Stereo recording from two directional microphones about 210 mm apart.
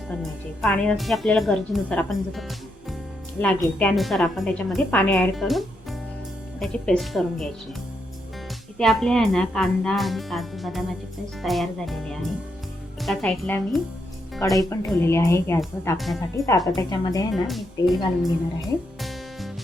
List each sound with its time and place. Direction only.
0.1 s a woman's voice: 5° left (ahead or behind)
8.8 s a woman's voice: centre (ahead or behind)
14.6 s speech: 15° left (ahead or behind)
16.0 s a woman's voice: centre (ahead or behind)
16.7 s speech: 20° left (ahead or behind)
17.3 s a woman's voice: centre (ahead or behind)
18.9 s music: centre (ahead or behind)